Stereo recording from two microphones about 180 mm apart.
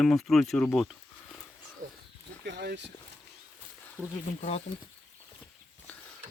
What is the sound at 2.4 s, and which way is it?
Speech, 75° right (ahead or behind).